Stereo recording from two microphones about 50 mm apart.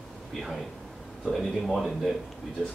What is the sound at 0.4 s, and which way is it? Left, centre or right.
Speech, centre.